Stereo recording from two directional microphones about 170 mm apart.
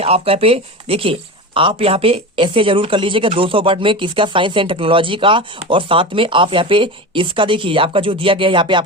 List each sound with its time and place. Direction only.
0.0 s speech: 35° right (ahead or behind)